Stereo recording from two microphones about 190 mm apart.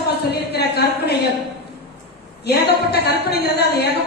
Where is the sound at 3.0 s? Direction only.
60° left (ahead or behind).